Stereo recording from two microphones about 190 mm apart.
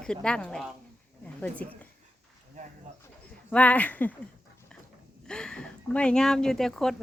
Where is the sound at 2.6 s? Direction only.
40° right (ahead or behind).